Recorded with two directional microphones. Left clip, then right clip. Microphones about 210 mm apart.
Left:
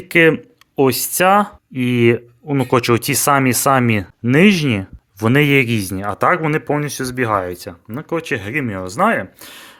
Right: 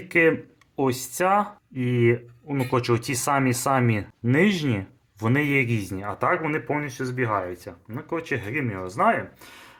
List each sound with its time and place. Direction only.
0.1 s speech: 40° left (ahead or behind)